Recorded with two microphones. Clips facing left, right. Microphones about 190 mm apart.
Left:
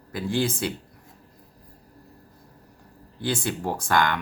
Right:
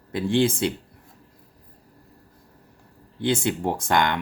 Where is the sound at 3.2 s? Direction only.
20° right (ahead or behind).